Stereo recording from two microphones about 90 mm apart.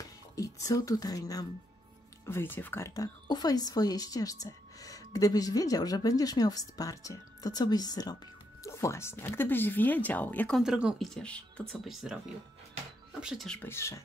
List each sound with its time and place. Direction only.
0.4 s speech: 40° left (ahead or behind)
2.2 s speech: 25° left (ahead or behind)
2.8 s a woman's voice: 45° left (ahead or behind)
8.6 s speech: 35° left (ahead or behind)
10.6 s speech: 10° right (ahead or behind)
11.0 s speech: 5° left (ahead or behind)
11.8 s speech: 5° right (ahead or behind)
13.2 s speech: 5° right (ahead or behind)
13.7 s speech: 30° left (ahead or behind)